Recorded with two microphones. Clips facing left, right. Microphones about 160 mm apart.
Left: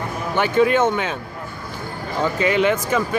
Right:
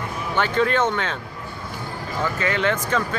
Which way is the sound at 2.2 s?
15° left (ahead or behind).